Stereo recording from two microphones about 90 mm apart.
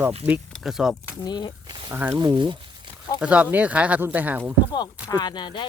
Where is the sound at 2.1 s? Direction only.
45° right (ahead or behind).